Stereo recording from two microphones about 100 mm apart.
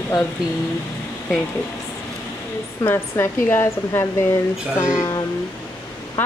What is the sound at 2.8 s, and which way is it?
A woman's voice, 20° left (ahead or behind).